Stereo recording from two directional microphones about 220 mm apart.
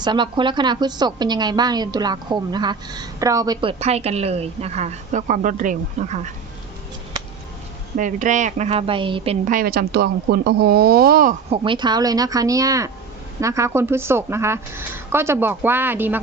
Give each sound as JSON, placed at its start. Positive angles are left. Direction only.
{"t": 0.0, "sound": "a woman's voice", "side_deg": -20}
{"t": 7.9, "sound": "a woman's voice", "side_deg": -35}
{"t": 9.6, "sound": "speech", "side_deg": -45}
{"t": 11.5, "sound": "a woman's voice", "side_deg": -20}